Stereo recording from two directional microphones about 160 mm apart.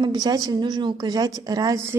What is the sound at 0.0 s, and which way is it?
A woman's voice, 25° right (ahead or behind).